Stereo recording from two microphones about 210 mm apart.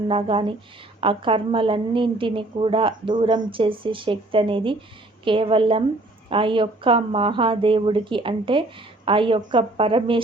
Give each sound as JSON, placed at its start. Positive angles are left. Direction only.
{"t": 0.1, "sound": "a woman's voice", "side_deg": -25}